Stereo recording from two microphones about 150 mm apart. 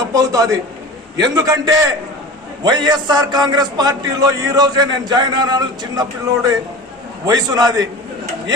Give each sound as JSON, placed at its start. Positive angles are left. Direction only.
{"t": 0.1, "sound": "a man's voice", "side_deg": -25}